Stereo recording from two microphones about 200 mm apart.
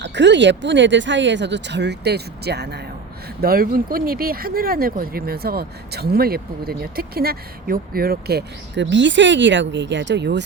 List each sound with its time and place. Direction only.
0.0 s speech: 60° right (ahead or behind)